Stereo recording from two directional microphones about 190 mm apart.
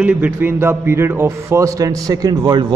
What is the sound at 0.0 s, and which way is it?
A man's voice, 5° right (ahead or behind).